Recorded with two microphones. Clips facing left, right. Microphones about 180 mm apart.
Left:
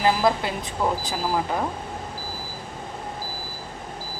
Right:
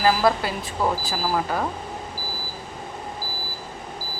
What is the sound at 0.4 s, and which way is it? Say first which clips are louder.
Speech: right 1 dB; 20° left (ahead or behind).